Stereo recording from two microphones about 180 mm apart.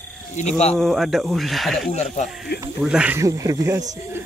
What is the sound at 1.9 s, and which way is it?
Speech, 40° left (ahead or behind).